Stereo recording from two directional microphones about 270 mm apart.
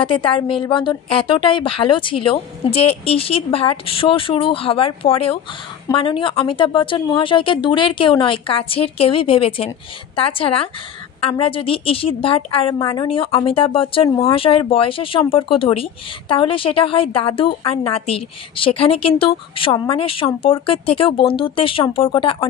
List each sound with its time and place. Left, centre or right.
0.0 s a woman's voice: centre